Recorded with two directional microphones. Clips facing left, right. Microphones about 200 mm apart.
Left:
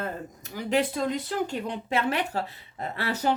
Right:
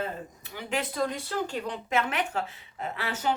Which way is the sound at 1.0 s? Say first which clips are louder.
Left 2 dB; 20° left (ahead or behind).